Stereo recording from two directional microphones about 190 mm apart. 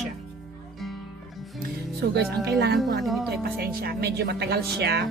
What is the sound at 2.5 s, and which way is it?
Speech, 60° right (ahead or behind).